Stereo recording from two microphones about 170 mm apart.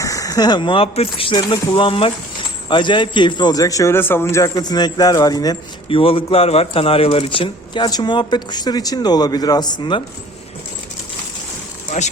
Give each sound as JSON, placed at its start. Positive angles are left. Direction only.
{"t": 0.0, "sound": "speech", "side_deg": 20}